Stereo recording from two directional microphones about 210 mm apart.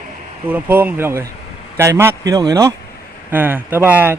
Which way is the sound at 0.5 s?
10° right (ahead or behind).